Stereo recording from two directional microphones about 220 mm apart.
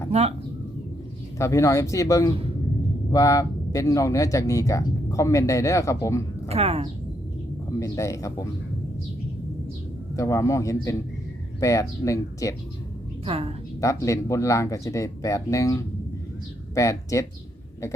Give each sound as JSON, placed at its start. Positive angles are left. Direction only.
{"t": 0.1, "sound": "speech", "side_deg": -30}
{"t": 1.4, "sound": "speech", "side_deg": 15}
{"t": 6.5, "sound": "speech", "side_deg": -30}
{"t": 7.8, "sound": "speech", "side_deg": 15}
{"t": 10.2, "sound": "speech", "side_deg": 15}
{"t": 13.2, "sound": "speech", "side_deg": -25}
{"t": 13.8, "sound": "speech", "side_deg": 15}